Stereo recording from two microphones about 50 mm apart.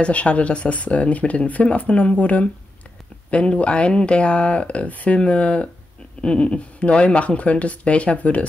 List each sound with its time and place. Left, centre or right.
0.0 s speech: left